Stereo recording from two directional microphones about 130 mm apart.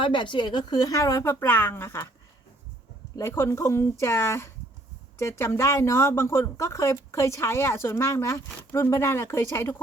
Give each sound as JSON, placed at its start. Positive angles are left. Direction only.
{"t": 0.0, "sound": "speech", "side_deg": 40}
{"t": 3.2, "sound": "speech", "side_deg": 20}